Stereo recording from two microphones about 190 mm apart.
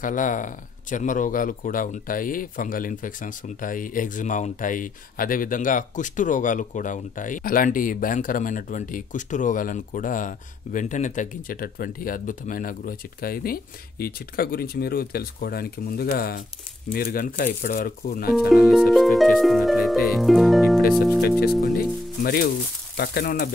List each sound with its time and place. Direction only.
0.0 s speech: 45° left (ahead or behind)
18.5 s music: centre (ahead or behind)
22.2 s speech: 50° left (ahead or behind)